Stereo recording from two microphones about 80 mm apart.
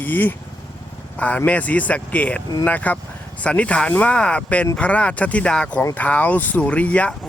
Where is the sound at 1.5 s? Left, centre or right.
Centre.